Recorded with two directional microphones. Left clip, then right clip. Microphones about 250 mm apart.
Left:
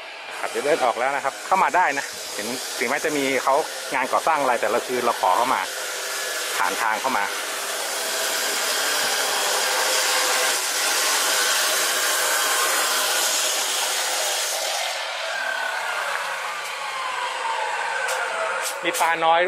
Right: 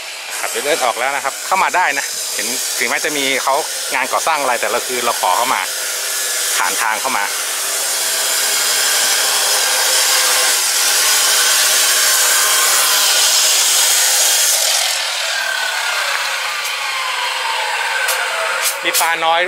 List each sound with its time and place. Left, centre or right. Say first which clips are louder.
0.7 s speech: right 4 dB; centre
3.4 s speech: right 4 dB; centre
5.2 s speech: right 4 dB; left
6.6 s speech: right 4 dB; centre
9.7 s hair dryer: right 6 dB; centre
18.9 s speech: right 4 dB; centre